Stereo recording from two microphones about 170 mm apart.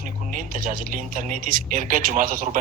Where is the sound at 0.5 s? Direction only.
50° right (ahead or behind).